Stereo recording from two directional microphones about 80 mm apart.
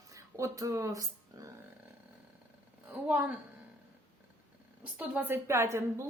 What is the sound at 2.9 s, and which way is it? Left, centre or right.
Speech, right.